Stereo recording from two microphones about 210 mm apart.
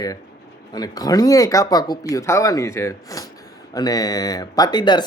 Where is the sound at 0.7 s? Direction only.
20° left (ahead or behind).